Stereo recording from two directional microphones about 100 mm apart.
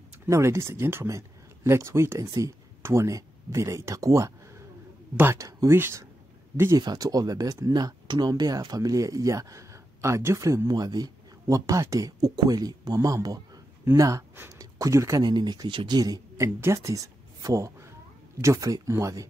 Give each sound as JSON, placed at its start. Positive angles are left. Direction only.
{"t": 0.3, "sound": "speech", "side_deg": -30}
{"t": 6.8, "sound": "speech", "side_deg": -40}
{"t": 15.2, "sound": "speech", "side_deg": -45}